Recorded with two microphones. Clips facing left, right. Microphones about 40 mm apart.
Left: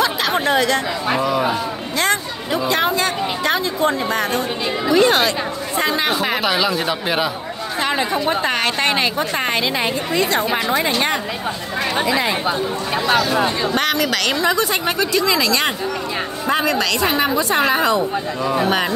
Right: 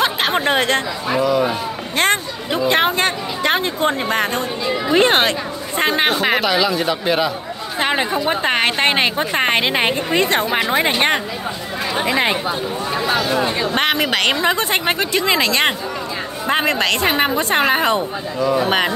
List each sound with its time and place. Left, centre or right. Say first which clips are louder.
0.0 s chatter: right 1 dB; right
1.2 s speech: right 4 dB; centre
2.0 s a woman's voice: right 2 dB; right
6.4 s speech: right 1 dB; centre
7.8 s speech: right 1 dB; right
9.5 s a woman's voice: right 3 dB; right
13.7 s a woman's voice: right 3 dB; right